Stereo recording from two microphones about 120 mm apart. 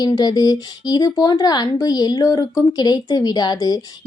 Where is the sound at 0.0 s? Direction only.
35° left (ahead or behind).